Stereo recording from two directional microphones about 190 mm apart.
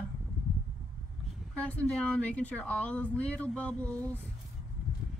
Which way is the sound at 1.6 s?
5° left (ahead or behind).